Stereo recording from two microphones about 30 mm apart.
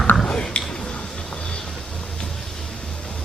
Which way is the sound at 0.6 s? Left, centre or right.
Left.